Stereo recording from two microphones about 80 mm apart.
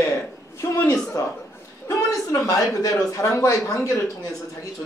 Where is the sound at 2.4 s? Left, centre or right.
Left.